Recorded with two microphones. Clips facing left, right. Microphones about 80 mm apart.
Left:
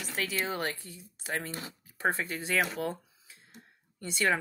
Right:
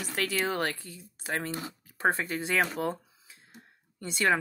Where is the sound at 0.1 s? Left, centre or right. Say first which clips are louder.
Right 3 dB; right.